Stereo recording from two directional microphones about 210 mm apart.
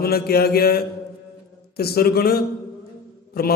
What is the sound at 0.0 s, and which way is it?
A man's voice, 45° left (ahead or behind).